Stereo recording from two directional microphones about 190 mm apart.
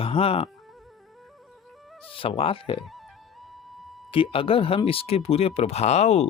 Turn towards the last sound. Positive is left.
turn(degrees=35)  # may be behind; listen again after turning